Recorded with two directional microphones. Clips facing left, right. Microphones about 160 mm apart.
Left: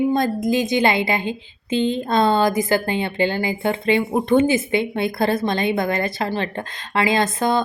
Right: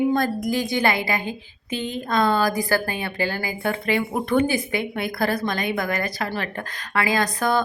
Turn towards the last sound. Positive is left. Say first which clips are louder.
# left 2 dB
turn(degrees=25)  # may be behind; listen again after turning